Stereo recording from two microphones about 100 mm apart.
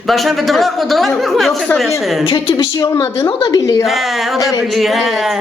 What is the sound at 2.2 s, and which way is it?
Speech, 65° left (ahead or behind).